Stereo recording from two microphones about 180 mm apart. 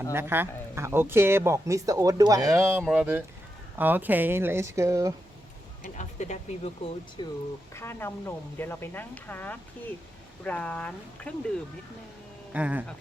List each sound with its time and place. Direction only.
0.1 s speech: 10° right (ahead or behind)
5.8 s speech: 40° left (ahead or behind)
7.2 s speech: 25° left (ahead or behind)
7.7 s speech: 15° left (ahead or behind)
12.5 s speech: 5° right (ahead or behind)